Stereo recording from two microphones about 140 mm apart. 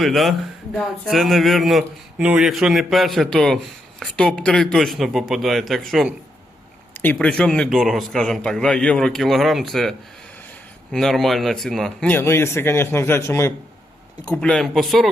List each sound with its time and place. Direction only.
0.0 s a man's voice: centre (ahead or behind)
6.9 s a man's voice: 10° left (ahead or behind)
10.9 s speech: centre (ahead or behind); by 13.5 s 20° left (ahead or behind)
14.3 s a man's voice: 5° left (ahead or behind)